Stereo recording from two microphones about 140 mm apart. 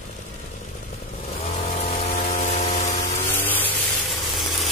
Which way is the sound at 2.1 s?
55° left (ahead or behind).